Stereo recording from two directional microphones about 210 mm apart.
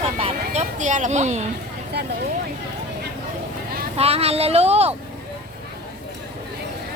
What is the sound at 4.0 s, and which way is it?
Speech, 30° right (ahead or behind).